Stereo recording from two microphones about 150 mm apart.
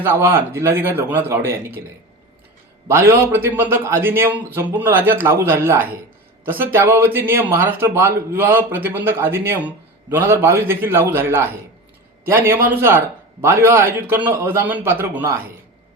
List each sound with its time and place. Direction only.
0.0 s speech: 15° right (ahead or behind)
2.8 s speech: 15° right (ahead or behind)